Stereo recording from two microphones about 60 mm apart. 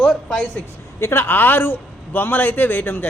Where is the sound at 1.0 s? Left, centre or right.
Left.